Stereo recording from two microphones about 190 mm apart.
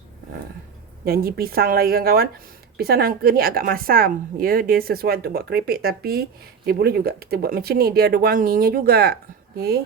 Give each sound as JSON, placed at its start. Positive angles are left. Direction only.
{"t": 1.0, "sound": "a woman's voice", "side_deg": -50}